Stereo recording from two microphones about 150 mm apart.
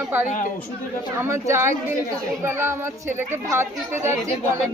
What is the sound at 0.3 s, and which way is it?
Speech, 60° left (ahead or behind).